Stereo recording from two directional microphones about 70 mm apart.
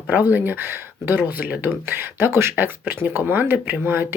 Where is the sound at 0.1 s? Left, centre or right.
Right.